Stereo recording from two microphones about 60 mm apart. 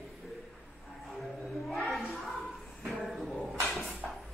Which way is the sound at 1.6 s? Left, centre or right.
Centre.